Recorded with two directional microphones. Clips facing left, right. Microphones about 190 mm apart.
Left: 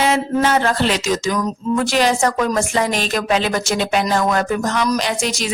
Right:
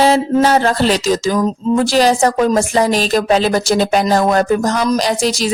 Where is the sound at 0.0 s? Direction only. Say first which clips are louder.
Right 5 dB; 35° right (ahead or behind).